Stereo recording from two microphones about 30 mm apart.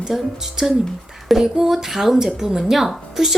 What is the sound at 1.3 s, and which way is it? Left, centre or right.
Speech, centre.